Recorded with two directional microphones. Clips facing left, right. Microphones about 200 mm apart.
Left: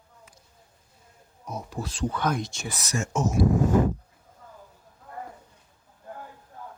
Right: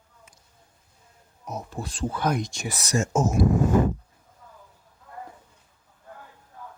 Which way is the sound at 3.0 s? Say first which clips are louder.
Right 2 dB; 45° right (ahead or behind).